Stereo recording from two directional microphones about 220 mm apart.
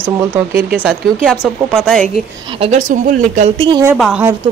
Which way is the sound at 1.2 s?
5° right (ahead or behind).